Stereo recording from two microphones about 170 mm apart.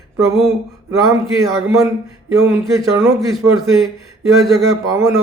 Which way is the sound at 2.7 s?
15° right (ahead or behind).